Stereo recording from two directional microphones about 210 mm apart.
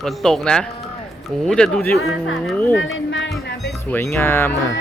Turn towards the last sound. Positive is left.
turn(degrees=10)  # may be behind; listen again after turning